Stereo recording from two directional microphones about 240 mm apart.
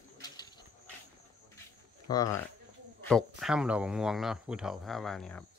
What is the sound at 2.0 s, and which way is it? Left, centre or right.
Speech, centre.